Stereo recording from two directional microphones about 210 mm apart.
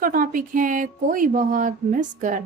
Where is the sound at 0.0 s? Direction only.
40° right (ahead or behind).